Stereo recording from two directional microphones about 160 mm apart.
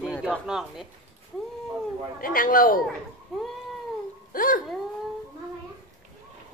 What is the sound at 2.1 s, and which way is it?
Speech, 60° left (ahead or behind).